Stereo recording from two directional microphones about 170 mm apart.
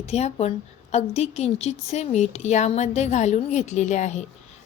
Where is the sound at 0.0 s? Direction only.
40° left (ahead or behind).